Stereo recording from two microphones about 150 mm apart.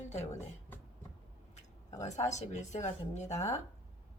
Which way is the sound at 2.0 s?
50° left (ahead or behind).